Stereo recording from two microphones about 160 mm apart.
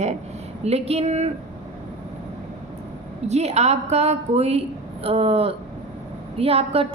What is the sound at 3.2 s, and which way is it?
A woman's voice, 45° right (ahead or behind).